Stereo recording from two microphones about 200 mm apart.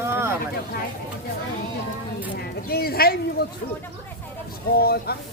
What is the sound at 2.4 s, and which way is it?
A man's voice, 50° left (ahead or behind).